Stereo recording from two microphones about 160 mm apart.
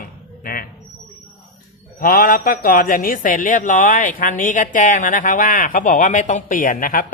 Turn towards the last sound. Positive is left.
turn(degrees=60)  # may be behind; listen again after turning